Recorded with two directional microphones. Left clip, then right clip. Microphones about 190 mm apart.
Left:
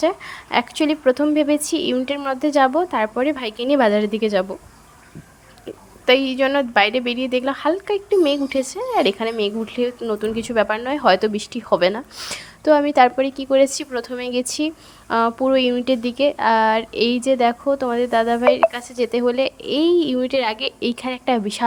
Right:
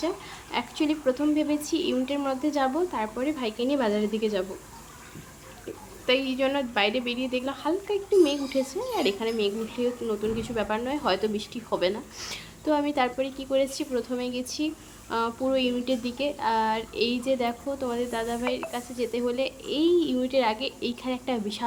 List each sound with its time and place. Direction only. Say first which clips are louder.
0.0 s speech: left 11 dB; 40° left (ahead or behind)
6.1 s speech: left 8 dB; 40° left (ahead or behind)